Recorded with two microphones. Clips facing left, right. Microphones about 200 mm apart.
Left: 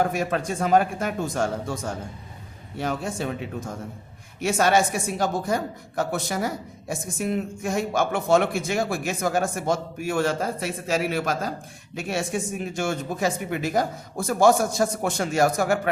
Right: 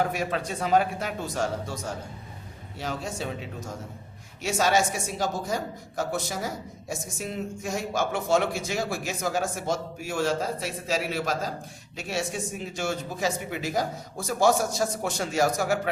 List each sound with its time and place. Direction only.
0.0 s a woman's voice: 50° left (ahead or behind)